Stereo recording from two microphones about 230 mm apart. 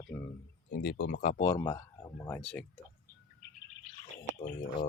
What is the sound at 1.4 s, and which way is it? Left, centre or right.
Speech, centre.